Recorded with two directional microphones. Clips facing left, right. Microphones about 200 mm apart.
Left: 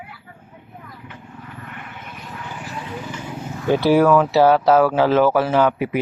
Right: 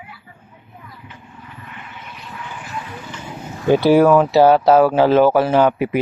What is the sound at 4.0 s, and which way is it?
Speech, 25° right (ahead or behind).